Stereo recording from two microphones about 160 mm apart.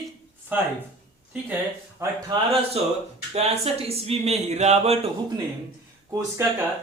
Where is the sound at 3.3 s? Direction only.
40° right (ahead or behind).